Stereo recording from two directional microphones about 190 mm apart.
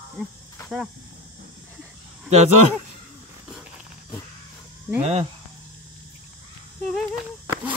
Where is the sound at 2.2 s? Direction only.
35° right (ahead or behind).